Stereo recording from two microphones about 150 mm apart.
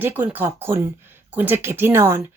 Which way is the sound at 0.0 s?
15° right (ahead or behind).